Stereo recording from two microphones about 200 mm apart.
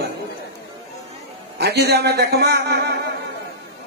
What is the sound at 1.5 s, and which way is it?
A man's voice, 55° right (ahead or behind).